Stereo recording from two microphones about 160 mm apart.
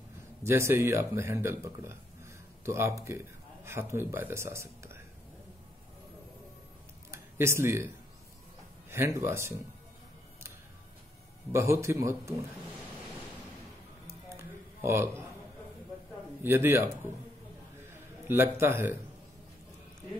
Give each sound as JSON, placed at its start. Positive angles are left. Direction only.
{"t": 0.4, "sound": "speech", "side_deg": -15}
{"t": 7.1, "sound": "a sound", "side_deg": -15}
{"t": 8.9, "sound": "a man's voice", "side_deg": -15}
{"t": 11.5, "sound": "a man's voice", "side_deg": -15}
{"t": 14.0, "sound": "music", "side_deg": -15}
{"t": 16.4, "sound": "a man's voice", "side_deg": -15}
{"t": 17.8, "sound": "a sound", "side_deg": -15}